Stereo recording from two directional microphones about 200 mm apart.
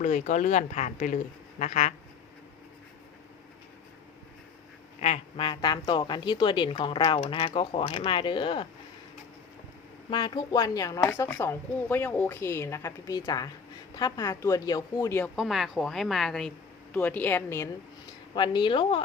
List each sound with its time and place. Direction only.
0.0 s a woman's voice: 40° left (ahead or behind)
4.9 s speech: 30° left (ahead or behind)
10.1 s a woman's voice: 20° left (ahead or behind)
15.4 s a woman's voice: centre (ahead or behind)
18.3 s speech: 20° left (ahead or behind)